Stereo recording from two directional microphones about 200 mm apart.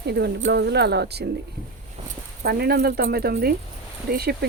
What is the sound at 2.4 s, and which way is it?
Speech, 50° right (ahead or behind).